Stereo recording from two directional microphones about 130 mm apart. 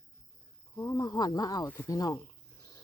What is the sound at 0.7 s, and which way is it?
Snake, 25° left (ahead or behind).